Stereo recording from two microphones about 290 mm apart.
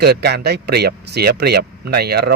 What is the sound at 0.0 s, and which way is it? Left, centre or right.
Speech, right.